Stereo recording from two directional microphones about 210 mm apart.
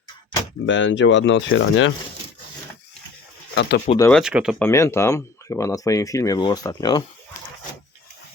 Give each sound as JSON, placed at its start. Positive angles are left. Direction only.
{"t": 0.6, "sound": "speech", "side_deg": 60}
{"t": 3.5, "sound": "speech", "side_deg": 55}
{"t": 3.8, "sound": "speech", "side_deg": 15}
{"t": 4.1, "sound": "speech", "side_deg": -5}
{"t": 4.6, "sound": "speech", "side_deg": 15}